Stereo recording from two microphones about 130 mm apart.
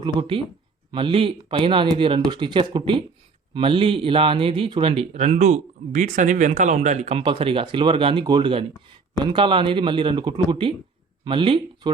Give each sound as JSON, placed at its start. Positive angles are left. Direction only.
{"t": 0.0, "sound": "a man's voice", "side_deg": -40}
{"t": 5.1, "sound": "speech", "side_deg": -60}
{"t": 7.2, "sound": "a man's voice", "side_deg": -45}